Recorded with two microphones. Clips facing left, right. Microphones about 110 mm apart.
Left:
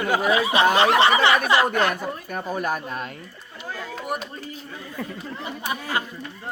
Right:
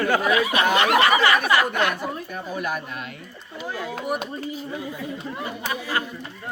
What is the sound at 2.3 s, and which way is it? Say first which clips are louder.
Speech: left 6 dB; 40° left (ahead or behind).